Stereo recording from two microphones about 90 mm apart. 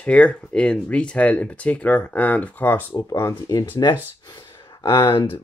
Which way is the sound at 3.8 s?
50° left (ahead or behind).